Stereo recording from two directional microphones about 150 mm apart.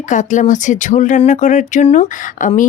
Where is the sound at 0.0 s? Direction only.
55° left (ahead or behind).